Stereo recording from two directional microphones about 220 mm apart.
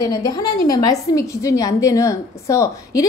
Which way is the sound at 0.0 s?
15° left (ahead or behind).